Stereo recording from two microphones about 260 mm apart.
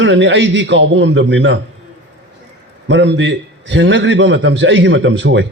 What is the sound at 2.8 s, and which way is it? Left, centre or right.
A man's voice, right.